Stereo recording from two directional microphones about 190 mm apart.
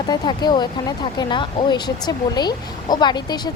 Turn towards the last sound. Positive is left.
turn(degrees=20)  # may be behind; listen again after turning